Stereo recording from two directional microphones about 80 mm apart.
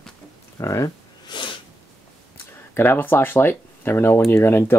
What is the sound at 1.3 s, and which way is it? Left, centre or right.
Snort, left.